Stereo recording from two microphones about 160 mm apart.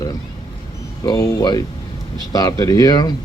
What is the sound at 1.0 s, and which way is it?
A man's voice, 25° left (ahead or behind).